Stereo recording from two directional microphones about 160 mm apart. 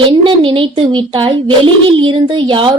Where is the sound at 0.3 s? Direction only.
35° right (ahead or behind).